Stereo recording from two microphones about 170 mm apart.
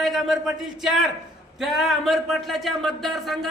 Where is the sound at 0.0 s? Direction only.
Centre (ahead or behind).